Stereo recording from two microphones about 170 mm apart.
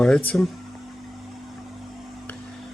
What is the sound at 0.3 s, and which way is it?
Speech, 5° left (ahead or behind).